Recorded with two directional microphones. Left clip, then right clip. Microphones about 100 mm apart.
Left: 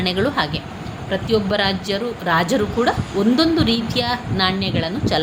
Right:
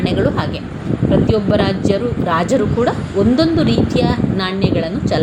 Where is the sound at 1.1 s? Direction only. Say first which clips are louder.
Right 4 dB; centre (ahead or behind).